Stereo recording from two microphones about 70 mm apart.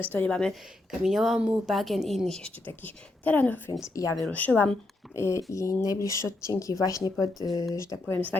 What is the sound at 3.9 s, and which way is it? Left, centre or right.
Speech, left.